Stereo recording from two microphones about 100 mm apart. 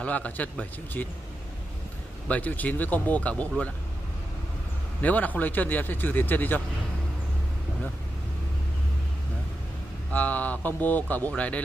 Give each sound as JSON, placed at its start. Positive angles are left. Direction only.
{"t": 0.0, "sound": "speech", "side_deg": 15}
{"t": 2.2, "sound": "speech", "side_deg": 15}
{"t": 5.0, "sound": "speech", "side_deg": 15}
{"t": 10.1, "sound": "speech", "side_deg": 15}